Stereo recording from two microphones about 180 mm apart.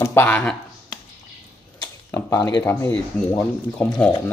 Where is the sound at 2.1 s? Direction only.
20° left (ahead or behind).